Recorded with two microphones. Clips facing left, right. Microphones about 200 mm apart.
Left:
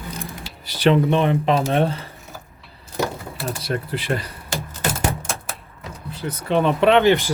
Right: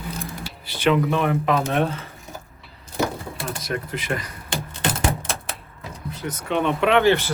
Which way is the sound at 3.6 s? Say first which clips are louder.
Left 3 dB; 30° left (ahead or behind).